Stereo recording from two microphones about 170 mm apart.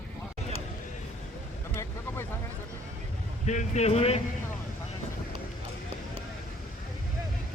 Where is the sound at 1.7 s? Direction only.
15° left (ahead or behind).